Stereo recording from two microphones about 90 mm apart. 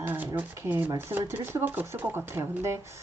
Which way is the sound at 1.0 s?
25° right (ahead or behind).